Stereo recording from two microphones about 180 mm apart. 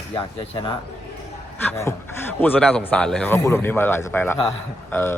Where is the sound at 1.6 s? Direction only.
15° left (ahead or behind).